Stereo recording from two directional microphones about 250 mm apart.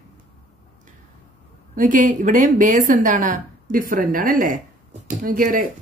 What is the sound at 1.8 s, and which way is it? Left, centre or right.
A woman's voice, right.